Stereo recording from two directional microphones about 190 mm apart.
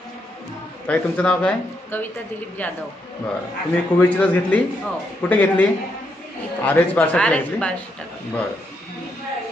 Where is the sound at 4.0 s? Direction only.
5° left (ahead or behind).